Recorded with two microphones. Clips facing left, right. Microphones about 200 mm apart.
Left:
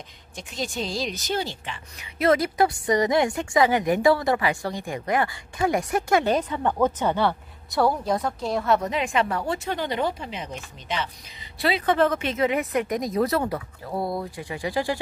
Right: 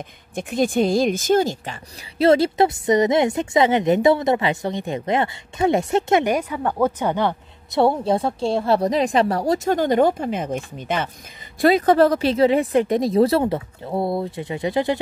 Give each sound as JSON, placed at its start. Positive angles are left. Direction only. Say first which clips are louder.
{"t": 0.4, "sound": "a woman's voice", "louder": "right 11 dB", "side_deg": -55}
{"t": 2.1, "sound": "a woman's voice", "louder": "right 5 dB", "side_deg": -30}
{"t": 6.3, "sound": "a woman's voice", "louder": "right 1 dB", "side_deg": -10}